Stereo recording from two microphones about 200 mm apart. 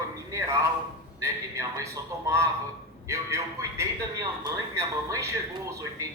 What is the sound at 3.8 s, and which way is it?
A man's voice, 15° right (ahead or behind).